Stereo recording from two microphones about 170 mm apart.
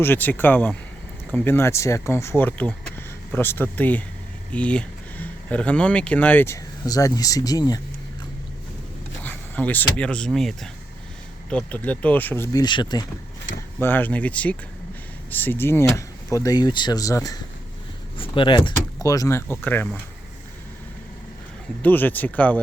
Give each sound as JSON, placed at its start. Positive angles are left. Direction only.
{"t": 0.0, "sound": "speech", "side_deg": 10}
{"t": 9.2, "sound": "speech", "side_deg": 10}
{"t": 12.5, "sound": "speech", "side_deg": 25}
{"t": 13.7, "sound": "speech", "side_deg": 10}
{"t": 21.8, "sound": "speech", "side_deg": 10}